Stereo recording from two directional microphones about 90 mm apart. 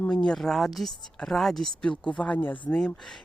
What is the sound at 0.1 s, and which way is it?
Speech, 5° left (ahead or behind).